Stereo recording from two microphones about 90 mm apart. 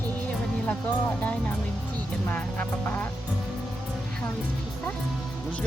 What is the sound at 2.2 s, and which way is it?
Music, 20° left (ahead or behind).